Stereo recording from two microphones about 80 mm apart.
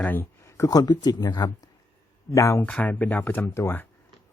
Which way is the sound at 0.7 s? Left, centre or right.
Left.